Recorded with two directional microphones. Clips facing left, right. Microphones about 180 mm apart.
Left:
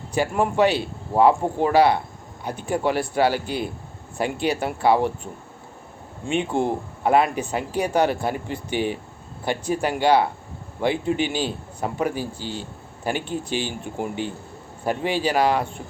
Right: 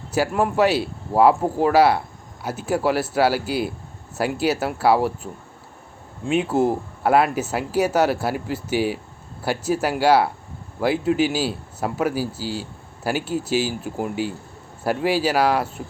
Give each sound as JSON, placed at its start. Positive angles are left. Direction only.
{"t": 0.1, "sound": "speech", "side_deg": -5}